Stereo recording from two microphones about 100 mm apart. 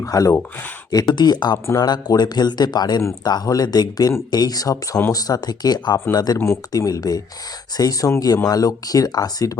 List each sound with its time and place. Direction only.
0.0 s speech: 35° left (ahead or behind)